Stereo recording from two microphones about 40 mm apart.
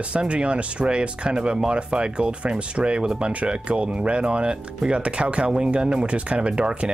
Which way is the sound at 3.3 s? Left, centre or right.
Right.